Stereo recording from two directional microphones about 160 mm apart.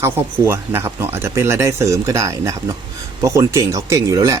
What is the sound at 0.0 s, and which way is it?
Speech, 15° right (ahead or behind).